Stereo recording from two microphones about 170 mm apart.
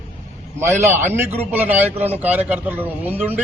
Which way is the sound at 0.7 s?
10° right (ahead or behind).